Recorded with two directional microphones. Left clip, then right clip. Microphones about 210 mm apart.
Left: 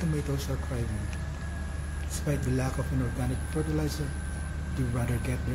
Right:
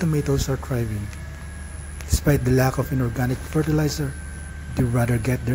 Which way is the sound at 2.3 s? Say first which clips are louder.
Right 12 dB; 45° right (ahead or behind).